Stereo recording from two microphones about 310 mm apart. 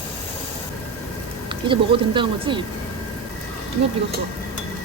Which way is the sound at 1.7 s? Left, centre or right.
Centre.